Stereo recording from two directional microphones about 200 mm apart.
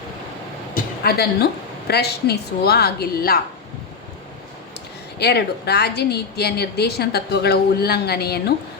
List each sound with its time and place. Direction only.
0.7 s a sound: 50° left (ahead or behind)
1.9 s a woman's voice: 55° left (ahead or behind)
5.2 s a woman's voice: 55° left (ahead or behind)